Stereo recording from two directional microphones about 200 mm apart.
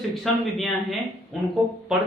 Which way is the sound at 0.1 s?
Centre (ahead or behind).